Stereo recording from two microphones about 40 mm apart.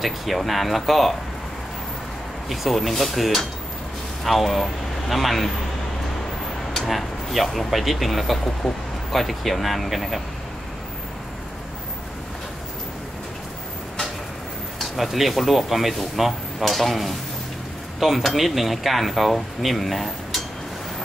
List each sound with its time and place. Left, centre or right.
0.0 s speech: centre
2.5 s speech: centre
6.9 s speech: centre
15.0 s speech: centre